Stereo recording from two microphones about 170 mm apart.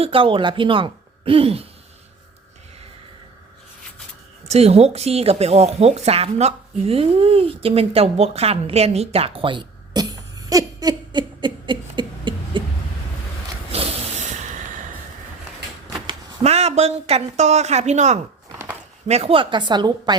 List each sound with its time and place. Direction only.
0.0 s speech: 30° right (ahead or behind)
4.4 s speech: 40° right (ahead or behind)
13.7 s a sound: 35° right (ahead or behind)
16.4 s a woman's voice: 40° right (ahead or behind)